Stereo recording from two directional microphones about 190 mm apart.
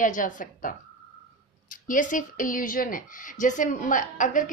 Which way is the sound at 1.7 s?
45° left (ahead or behind).